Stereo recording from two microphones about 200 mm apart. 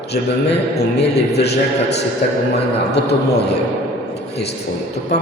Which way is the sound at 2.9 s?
55° left (ahead or behind).